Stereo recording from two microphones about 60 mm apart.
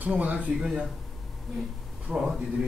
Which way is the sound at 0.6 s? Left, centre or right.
Centre.